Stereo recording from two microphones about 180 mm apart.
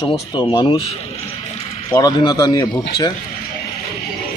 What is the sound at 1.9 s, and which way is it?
Speech, 20° left (ahead or behind).